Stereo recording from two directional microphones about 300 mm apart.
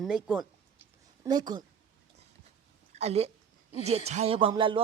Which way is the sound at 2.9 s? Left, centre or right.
Right.